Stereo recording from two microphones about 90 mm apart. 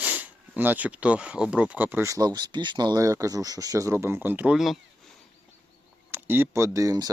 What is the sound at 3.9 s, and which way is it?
Speech, 25° right (ahead or behind).